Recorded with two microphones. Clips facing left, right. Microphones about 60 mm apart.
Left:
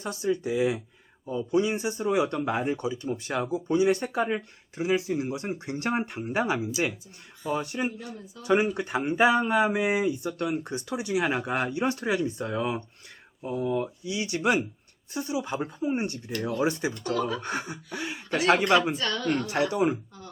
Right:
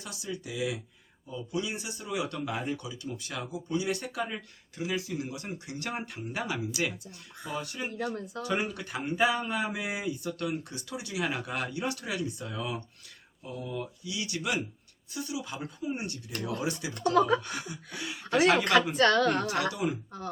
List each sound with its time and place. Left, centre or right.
0.0 s speech: left
17.2 s a sound: right
17.4 s speech: left
18.9 s speech: right
19.7 s speech: left